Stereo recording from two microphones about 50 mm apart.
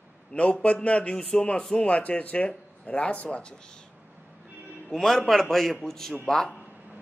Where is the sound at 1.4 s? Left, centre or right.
Left.